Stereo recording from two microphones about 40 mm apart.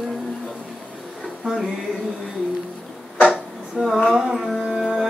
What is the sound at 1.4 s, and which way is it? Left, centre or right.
Music, centre.